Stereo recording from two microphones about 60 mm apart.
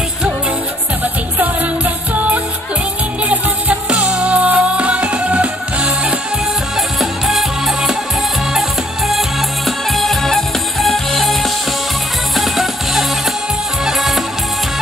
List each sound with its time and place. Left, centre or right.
2.1 s music: right
3.9 s music: centre
7.0 s music: centre